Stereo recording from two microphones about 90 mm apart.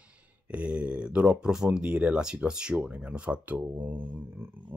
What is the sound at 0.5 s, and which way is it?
Speech, 15° right (ahead or behind).